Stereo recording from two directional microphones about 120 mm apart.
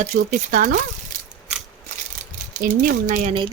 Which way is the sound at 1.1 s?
90° right.